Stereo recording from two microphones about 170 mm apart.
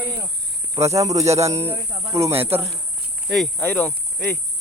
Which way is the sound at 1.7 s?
35° right (ahead or behind).